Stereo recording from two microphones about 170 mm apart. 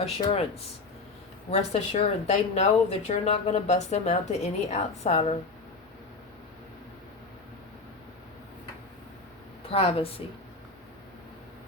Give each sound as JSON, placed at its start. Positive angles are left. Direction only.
{"t": 0.2, "sound": "a woman's voice", "side_deg": 30}
{"t": 1.5, "sound": "a woman's voice", "side_deg": 40}
{"t": 9.6, "sound": "a woman's voice", "side_deg": 35}